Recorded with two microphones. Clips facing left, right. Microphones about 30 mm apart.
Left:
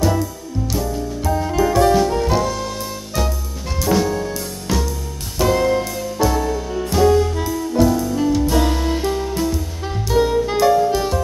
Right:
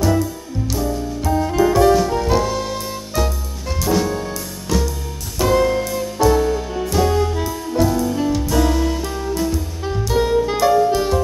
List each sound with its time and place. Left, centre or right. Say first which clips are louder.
0.7 s music: right 1 dB; centre
5.4 s music: even; centre
8.6 s music: right 2 dB; centre
9.4 s music: even; centre